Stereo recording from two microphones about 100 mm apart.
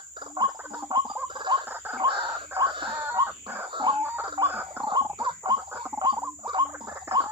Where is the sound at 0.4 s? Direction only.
45° right (ahead or behind).